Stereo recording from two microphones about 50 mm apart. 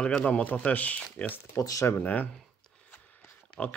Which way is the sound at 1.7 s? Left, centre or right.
Left.